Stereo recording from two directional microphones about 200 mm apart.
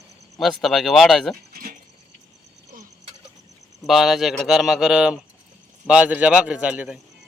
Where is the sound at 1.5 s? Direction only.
45° right (ahead or behind).